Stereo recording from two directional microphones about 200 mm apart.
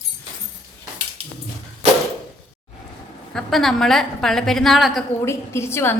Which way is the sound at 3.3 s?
Centre (ahead or behind).